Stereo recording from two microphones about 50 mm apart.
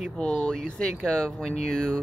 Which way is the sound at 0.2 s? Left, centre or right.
Centre.